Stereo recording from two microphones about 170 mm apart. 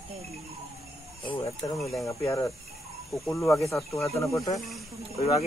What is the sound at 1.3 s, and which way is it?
Speech, 30° left (ahead or behind).